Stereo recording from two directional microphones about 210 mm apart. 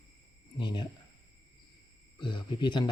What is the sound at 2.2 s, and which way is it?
Speech, 20° left (ahead or behind).